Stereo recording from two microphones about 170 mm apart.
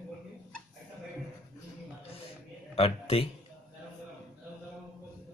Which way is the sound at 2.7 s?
35° left (ahead or behind).